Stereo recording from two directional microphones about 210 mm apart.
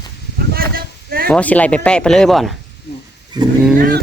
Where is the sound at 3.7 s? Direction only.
45° right (ahead or behind).